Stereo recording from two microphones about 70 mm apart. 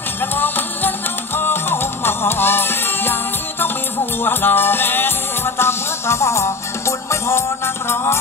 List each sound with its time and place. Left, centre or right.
0.2 s music: left